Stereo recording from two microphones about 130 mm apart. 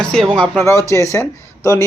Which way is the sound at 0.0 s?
5° left (ahead or behind).